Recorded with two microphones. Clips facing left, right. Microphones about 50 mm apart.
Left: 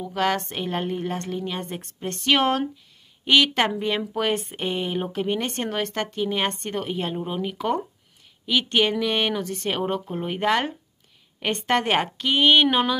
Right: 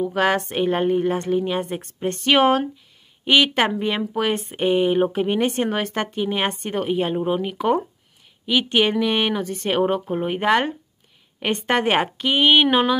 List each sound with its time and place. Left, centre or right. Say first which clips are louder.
0.0 s a woman's voice: right 4 dB; centre
1.6 s speech: right 6 dB; centre